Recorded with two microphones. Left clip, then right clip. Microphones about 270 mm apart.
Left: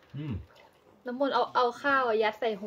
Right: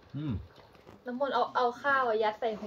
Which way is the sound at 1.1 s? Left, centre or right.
Left.